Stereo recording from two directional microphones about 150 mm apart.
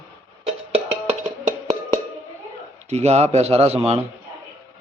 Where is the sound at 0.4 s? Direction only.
40° right (ahead or behind).